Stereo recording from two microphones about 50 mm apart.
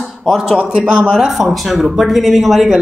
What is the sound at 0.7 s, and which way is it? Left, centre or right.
Speech, centre.